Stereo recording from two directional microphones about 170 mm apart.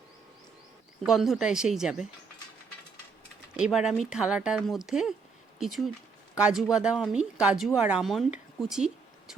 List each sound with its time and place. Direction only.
1.0 s speech: centre (ahead or behind)
3.6 s a woman's voice: 5° right (ahead or behind)